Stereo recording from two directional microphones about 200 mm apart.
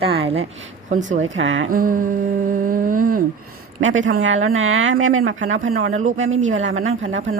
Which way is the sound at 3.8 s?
75° right (ahead or behind).